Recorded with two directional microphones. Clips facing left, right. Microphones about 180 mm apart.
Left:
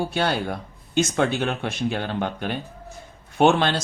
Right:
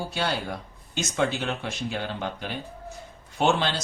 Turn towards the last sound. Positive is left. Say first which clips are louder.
# left 5 dB
turn(degrees=60)  # may be behind; listen again after turning